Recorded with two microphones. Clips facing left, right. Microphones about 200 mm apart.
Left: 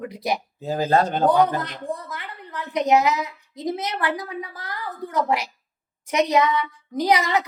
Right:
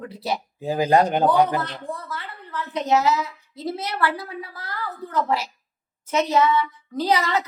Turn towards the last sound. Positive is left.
turn(degrees=15)  # may be behind; listen again after turning